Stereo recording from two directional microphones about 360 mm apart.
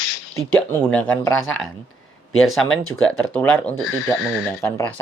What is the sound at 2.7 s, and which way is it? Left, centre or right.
Speech, left.